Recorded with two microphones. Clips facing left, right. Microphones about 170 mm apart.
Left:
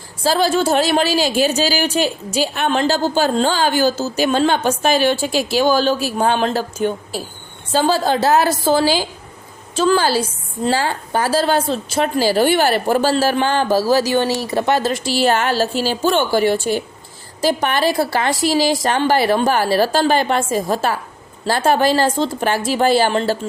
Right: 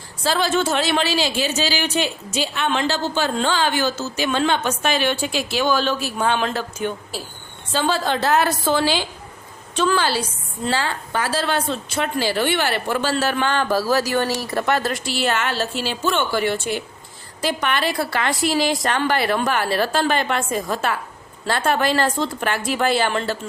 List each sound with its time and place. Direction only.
0.2 s speech: 40° left (ahead or behind)